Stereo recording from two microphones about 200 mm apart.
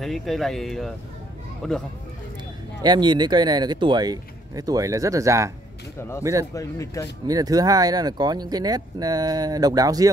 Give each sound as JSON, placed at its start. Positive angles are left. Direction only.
{"t": 0.0, "sound": "speech", "side_deg": 0}
{"t": 2.8, "sound": "speech", "side_deg": -20}
{"t": 5.9, "sound": "speech", "side_deg": 15}
{"t": 7.2, "sound": "speech", "side_deg": -20}